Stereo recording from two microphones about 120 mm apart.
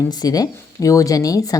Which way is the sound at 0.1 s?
35° left (ahead or behind).